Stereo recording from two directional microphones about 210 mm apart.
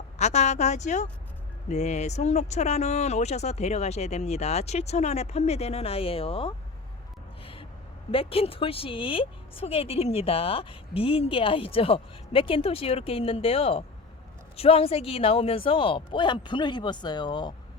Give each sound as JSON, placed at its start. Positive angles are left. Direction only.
{"t": 0.2, "sound": "speech", "side_deg": 30}
{"t": 7.4, "sound": "gasp", "side_deg": 25}
{"t": 8.1, "sound": "a woman's voice", "side_deg": 25}